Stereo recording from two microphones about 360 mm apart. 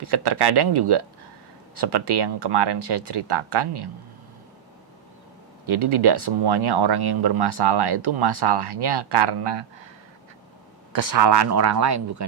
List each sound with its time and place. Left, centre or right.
0.0 s speech: right
5.6 s speech: right
10.9 s speech: right